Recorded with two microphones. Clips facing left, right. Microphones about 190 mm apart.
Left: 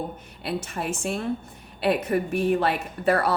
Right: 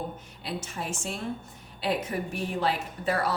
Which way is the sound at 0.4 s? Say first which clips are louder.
Left 6 dB; 60° left (ahead or behind).